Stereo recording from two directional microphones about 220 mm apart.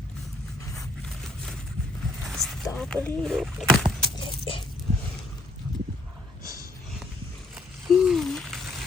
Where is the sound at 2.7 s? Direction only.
5° left (ahead or behind).